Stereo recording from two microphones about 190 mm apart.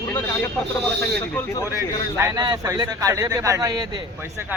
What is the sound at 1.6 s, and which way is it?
A man's voice, 15° right (ahead or behind).